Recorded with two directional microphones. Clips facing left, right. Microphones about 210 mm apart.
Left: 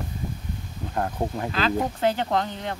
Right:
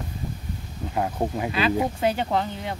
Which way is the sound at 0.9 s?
10° right (ahead or behind).